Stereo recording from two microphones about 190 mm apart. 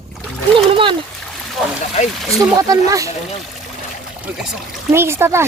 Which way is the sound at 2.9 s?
15° right (ahead or behind).